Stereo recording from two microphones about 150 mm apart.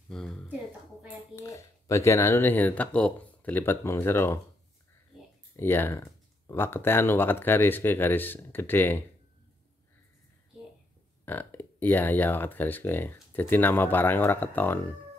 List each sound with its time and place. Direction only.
0.1 s a sound: 5° left (ahead or behind)
1.3 s speech: 20° left (ahead or behind)
5.6 s speech: 15° left (ahead or behind)
11.2 s speech: 15° left (ahead or behind)